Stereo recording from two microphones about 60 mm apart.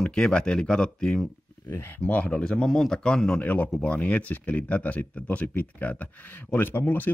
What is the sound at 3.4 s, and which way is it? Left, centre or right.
Speech, left.